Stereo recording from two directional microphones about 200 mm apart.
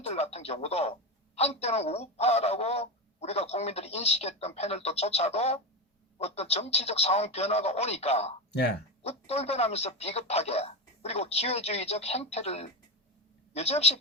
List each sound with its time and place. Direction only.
0.0 s a woman's voice: 30° left (ahead or behind)